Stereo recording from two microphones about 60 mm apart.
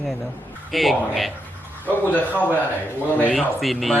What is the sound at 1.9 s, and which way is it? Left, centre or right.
Speech, left.